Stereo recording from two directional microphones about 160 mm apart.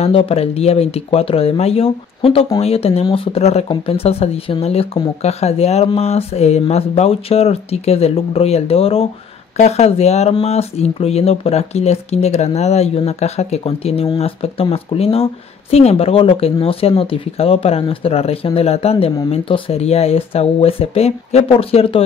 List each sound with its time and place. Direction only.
0.0 s speech: 35° left (ahead or behind)